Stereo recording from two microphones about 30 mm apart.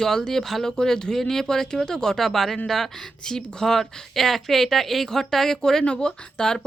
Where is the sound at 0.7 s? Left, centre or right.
Left.